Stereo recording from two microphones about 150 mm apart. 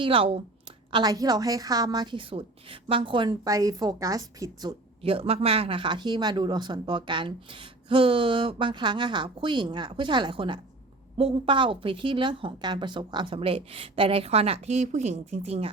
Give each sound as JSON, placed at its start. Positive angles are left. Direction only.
{"t": 0.0, "sound": "a woman's voice", "side_deg": -40}
{"t": 5.0, "sound": "speech", "side_deg": -40}